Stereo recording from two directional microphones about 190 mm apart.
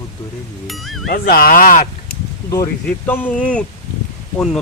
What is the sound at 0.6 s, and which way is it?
Speech, centre (ahead or behind).